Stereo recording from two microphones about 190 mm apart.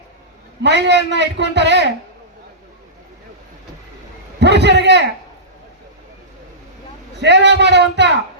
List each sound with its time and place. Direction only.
0.6 s a man's voice: 65° right (ahead or behind)
4.4 s a man's voice: 65° right (ahead or behind)
7.2 s a man's voice: 65° right (ahead or behind)